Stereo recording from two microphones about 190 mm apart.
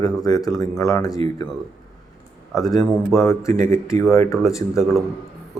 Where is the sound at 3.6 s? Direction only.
15° left (ahead or behind).